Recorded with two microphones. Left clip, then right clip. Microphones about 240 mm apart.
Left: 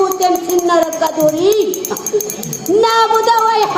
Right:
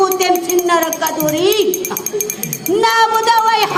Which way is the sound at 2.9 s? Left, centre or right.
Right.